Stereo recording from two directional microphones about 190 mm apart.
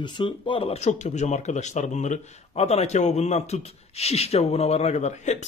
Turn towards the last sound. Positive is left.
turn(degrees=35)  # may be behind; listen again after turning